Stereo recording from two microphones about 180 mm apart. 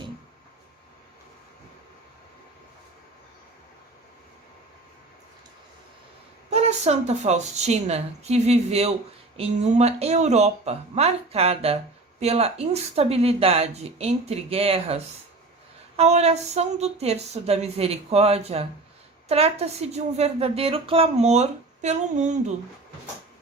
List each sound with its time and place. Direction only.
6.5 s a woman's voice: 35° right (ahead or behind)